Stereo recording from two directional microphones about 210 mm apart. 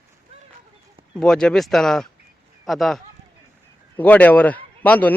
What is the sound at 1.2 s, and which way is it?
A man's voice, 5° left (ahead or behind).